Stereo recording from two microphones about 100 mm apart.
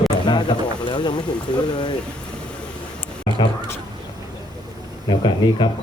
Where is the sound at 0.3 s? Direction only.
50° left (ahead or behind).